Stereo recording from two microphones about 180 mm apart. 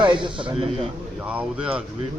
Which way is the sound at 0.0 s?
25° right (ahead or behind).